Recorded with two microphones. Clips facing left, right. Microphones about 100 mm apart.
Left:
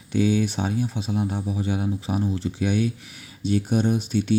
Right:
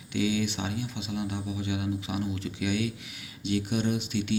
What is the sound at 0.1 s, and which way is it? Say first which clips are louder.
Speech: left 6 dB; 40° left (ahead or behind).